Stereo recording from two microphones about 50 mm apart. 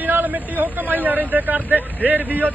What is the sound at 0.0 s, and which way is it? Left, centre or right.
Speech, right.